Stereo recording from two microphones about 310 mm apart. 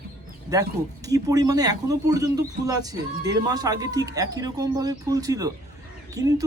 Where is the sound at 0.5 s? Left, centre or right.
Centre.